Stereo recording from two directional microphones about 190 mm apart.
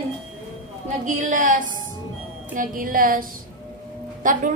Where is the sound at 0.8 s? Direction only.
40° right (ahead or behind).